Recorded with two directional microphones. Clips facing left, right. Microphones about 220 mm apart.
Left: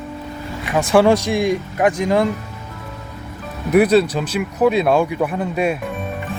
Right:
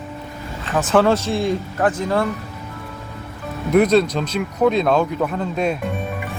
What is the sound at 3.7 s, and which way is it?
Speech, 5° left (ahead or behind).